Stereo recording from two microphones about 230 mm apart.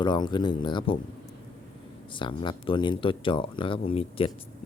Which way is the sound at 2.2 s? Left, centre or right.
Left.